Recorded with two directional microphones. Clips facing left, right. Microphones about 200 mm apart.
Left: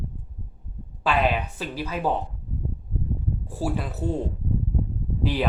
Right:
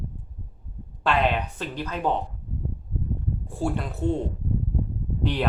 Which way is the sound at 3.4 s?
5° left (ahead or behind).